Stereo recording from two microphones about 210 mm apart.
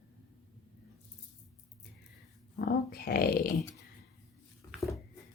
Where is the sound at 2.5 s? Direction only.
45° left (ahead or behind).